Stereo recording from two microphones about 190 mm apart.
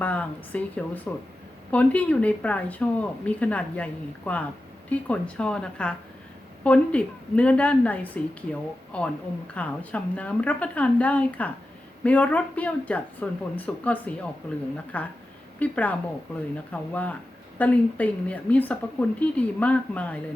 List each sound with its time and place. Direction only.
0.0 s a woman's voice: 5° left (ahead or behind)